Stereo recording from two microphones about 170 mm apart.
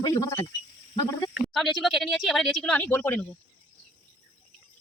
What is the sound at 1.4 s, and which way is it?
Speech, centre (ahead or behind).